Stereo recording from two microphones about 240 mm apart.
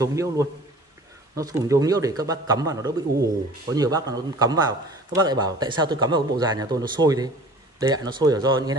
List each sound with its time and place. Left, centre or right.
0.0 s speech: centre